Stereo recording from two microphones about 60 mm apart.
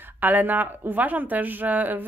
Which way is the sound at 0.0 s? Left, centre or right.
Right.